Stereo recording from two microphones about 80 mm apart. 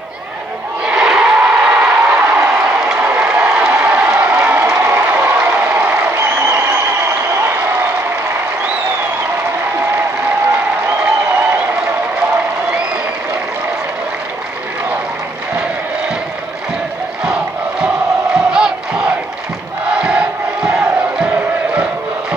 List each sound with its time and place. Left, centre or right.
0.8 s a sound: centre
3.0 s crowd: centre
3.5 s applause: centre
4.7 s a sound: right
7.4 s applause: right
9.8 s applause: right
17.2 s crowd: centre